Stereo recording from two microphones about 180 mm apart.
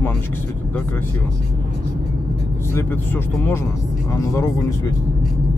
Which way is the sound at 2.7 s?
10° left (ahead or behind).